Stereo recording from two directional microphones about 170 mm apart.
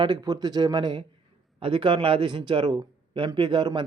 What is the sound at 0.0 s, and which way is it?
Speech, 25° right (ahead or behind).